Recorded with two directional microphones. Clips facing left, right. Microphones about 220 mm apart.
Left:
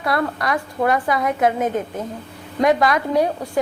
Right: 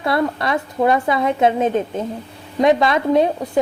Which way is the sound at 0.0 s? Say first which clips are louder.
Right 3 dB; 25° right (ahead or behind).